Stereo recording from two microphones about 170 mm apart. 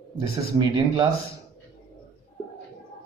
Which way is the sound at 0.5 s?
25° right (ahead or behind).